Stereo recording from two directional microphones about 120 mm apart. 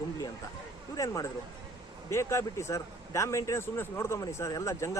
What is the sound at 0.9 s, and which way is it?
Speech, 30° left (ahead or behind).